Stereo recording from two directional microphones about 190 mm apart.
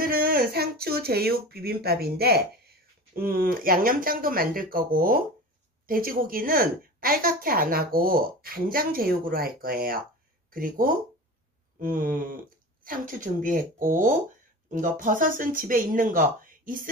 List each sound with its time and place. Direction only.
0.0 s a woman's voice: 50° right (ahead or behind)